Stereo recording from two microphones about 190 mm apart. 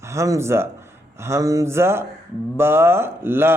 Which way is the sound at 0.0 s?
15° right (ahead or behind).